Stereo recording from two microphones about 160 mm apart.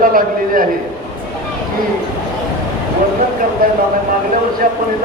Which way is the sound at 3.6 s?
60° right (ahead or behind).